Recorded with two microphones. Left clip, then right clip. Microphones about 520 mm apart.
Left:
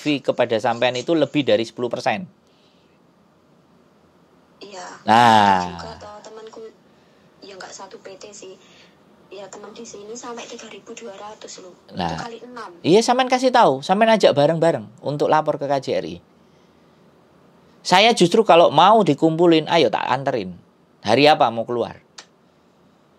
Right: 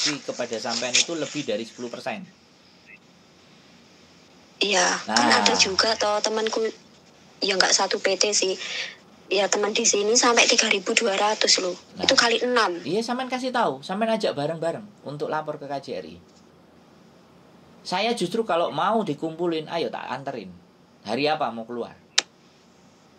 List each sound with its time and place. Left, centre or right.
0.1 s speech: left
4.6 s a woman's voice: right
12.8 s speech: left
17.8 s speech: left